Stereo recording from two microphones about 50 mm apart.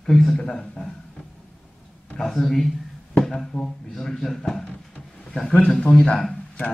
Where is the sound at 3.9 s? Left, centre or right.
Centre.